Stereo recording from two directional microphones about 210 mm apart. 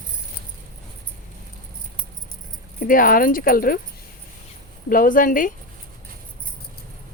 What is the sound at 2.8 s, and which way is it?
Speech, 40° left (ahead or behind).